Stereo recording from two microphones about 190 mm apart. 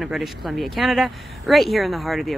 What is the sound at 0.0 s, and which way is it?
Speech, centre (ahead or behind).